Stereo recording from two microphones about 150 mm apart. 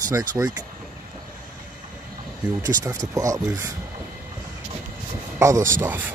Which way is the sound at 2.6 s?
25° right (ahead or behind).